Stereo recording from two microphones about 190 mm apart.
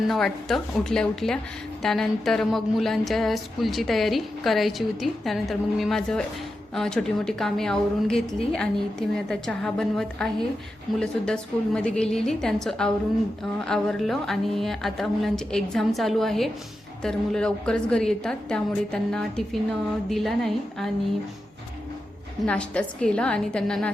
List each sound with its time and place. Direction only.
0.1 s speech: centre (ahead or behind)
22.4 s speech: 5° left (ahead or behind)